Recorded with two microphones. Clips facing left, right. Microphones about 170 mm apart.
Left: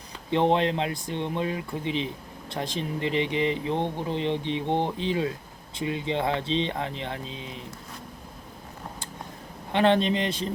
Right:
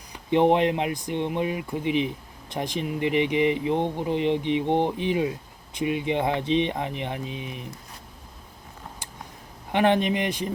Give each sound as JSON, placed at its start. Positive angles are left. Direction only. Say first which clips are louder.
{"t": 0.1, "sound": "speech", "louder": "right 3 dB", "side_deg": -15}
{"t": 9.7, "sound": "speech", "louder": "even", "side_deg": -15}